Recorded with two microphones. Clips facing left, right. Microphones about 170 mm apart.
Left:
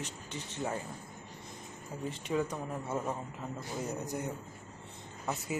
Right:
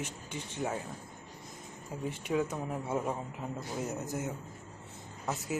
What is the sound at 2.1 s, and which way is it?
A man's voice, 5° right (ahead or behind).